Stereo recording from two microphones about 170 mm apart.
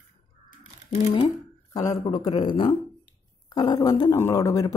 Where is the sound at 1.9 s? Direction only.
25° left (ahead or behind).